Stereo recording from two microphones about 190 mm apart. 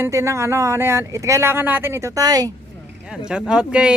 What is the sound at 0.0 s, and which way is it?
Speech, 15° right (ahead or behind).